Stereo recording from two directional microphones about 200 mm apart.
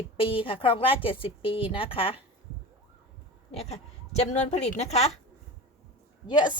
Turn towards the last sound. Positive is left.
turn(degrees=20)  # may be behind; listen again after turning